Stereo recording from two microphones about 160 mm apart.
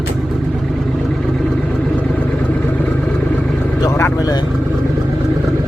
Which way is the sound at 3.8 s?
20° left (ahead or behind).